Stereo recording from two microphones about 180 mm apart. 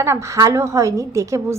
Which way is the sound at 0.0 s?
15° right (ahead or behind).